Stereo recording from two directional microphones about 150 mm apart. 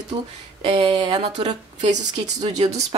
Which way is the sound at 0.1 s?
35° right (ahead or behind).